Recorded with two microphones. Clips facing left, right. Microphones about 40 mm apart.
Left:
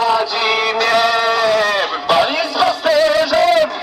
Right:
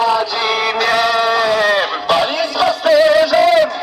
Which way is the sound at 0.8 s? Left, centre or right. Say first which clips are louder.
Even; centre.